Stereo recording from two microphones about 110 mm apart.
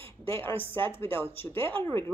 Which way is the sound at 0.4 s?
20° left (ahead or behind).